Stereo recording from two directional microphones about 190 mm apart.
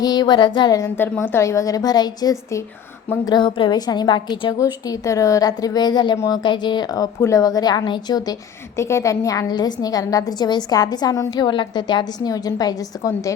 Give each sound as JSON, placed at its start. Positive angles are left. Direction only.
{"t": 0.0, "sound": "a woman's voice", "side_deg": 20}